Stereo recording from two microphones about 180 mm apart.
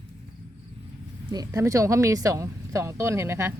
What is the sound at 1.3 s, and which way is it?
Speech, 20° right (ahead or behind).